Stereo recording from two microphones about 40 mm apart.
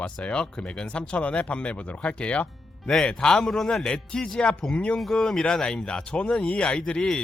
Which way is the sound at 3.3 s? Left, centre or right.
Centre.